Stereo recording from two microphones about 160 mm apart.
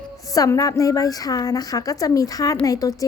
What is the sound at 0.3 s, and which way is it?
A woman's voice, 20° left (ahead or behind).